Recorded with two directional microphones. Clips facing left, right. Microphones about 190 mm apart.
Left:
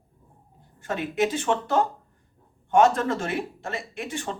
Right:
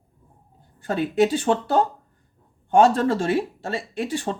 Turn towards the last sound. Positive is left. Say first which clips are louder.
# right 6 dB
turn(degrees=-35)  # may be behind; listen again after turning